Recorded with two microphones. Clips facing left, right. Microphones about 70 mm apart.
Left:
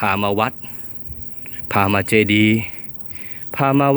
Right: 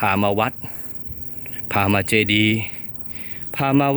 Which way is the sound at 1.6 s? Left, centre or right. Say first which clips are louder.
Left 2 dB; centre.